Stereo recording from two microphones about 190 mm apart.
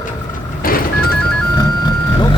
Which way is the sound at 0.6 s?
50° left (ahead or behind).